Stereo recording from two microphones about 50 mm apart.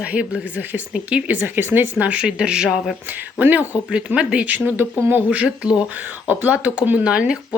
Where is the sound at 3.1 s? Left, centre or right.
Right.